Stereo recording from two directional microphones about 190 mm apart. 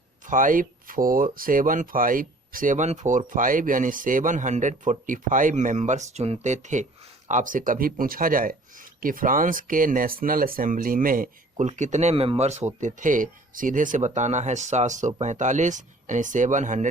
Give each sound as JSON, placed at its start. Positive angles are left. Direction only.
{"t": 0.3, "sound": "speech", "side_deg": -45}